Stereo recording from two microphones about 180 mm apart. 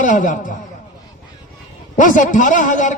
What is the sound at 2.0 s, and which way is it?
Speech, 45° left (ahead or behind).